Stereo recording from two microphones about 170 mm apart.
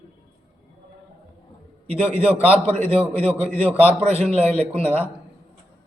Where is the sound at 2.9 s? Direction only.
35° right (ahead or behind).